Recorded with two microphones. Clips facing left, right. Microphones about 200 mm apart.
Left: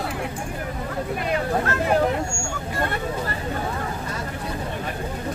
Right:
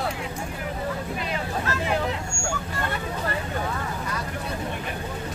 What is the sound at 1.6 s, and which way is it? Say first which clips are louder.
Vehicle: left 4 dB; 55° left (ahead or behind).